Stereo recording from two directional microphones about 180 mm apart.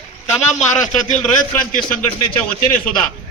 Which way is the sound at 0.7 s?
40° left (ahead or behind).